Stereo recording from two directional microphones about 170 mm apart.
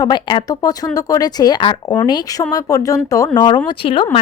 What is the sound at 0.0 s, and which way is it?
A woman's voice, 25° left (ahead or behind).